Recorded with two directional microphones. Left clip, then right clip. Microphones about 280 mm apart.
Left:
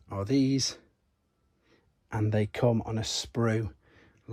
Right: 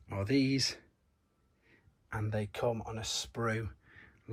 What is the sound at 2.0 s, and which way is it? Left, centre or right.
Speech, left.